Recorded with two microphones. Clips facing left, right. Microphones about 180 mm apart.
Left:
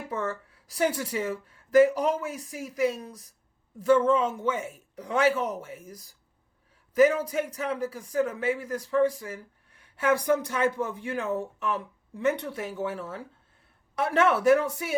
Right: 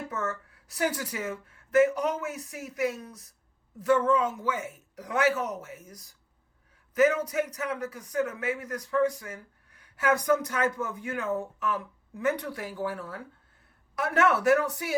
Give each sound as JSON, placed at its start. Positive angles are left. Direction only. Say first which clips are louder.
{"t": 0.1, "sound": "a man's voice", "louder": "left 2 dB", "side_deg": 30}